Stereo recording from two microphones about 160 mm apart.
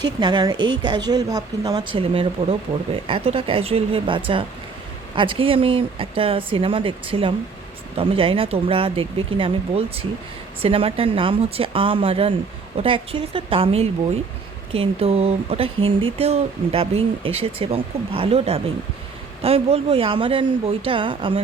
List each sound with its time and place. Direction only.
0.0 s speech: 25° right (ahead or behind)